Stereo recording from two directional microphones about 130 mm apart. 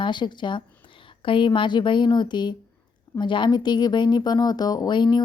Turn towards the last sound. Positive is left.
turn(degrees=35)  # may be behind; listen again after turning